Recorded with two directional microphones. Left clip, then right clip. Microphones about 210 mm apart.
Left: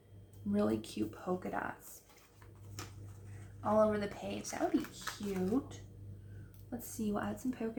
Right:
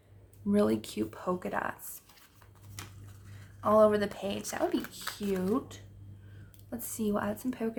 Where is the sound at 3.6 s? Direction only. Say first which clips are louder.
Right 7 dB; 50° right (ahead or behind).